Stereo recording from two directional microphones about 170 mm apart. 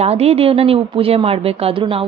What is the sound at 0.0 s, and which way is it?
A woman's voice, 35° right (ahead or behind).